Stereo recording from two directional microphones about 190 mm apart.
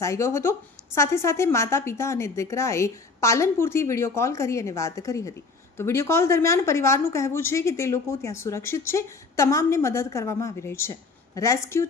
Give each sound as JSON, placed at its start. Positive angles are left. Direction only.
{"t": 0.0, "sound": "a woman's voice", "side_deg": 15}